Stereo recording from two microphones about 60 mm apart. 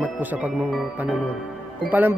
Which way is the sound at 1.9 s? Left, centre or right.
Right.